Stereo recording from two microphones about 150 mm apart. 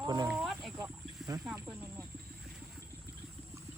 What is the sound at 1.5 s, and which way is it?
Speech, 5° right (ahead or behind).